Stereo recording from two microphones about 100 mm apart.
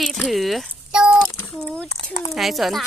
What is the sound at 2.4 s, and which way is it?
Speech, centre (ahead or behind).